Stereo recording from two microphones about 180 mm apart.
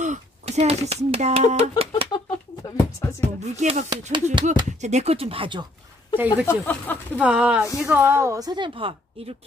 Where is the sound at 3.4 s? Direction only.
40° right (ahead or behind).